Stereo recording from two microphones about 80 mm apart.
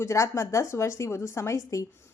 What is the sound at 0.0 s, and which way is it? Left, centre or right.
A woman's voice, left.